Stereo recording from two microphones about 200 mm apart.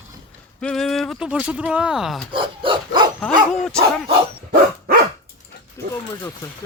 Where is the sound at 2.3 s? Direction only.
25° right (ahead or behind).